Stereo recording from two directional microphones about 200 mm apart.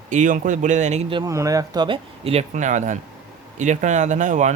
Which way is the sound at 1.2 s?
15° right (ahead or behind).